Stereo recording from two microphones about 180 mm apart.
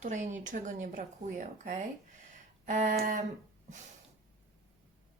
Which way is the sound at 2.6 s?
45° right (ahead or behind).